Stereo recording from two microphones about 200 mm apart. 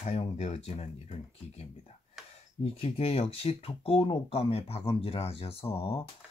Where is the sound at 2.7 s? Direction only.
30° left (ahead or behind).